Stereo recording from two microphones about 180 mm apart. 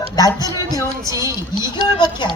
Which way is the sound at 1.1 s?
15° right (ahead or behind).